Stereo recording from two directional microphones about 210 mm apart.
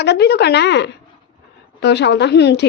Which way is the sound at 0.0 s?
55° left (ahead or behind).